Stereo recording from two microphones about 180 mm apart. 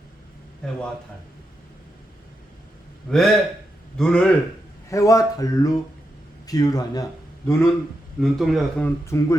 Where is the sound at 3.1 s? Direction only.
5° left (ahead or behind).